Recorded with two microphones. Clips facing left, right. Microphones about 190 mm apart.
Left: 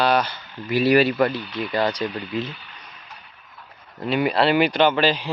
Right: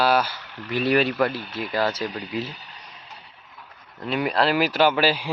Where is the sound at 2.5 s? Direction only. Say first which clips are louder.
Left 1 dB; 40° right (ahead or behind).